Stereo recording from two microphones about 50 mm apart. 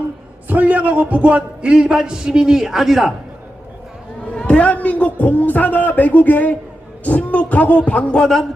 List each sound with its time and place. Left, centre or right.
0.4 s a man's voice: right; by 3.1 s centre
4.4 s a man's voice: left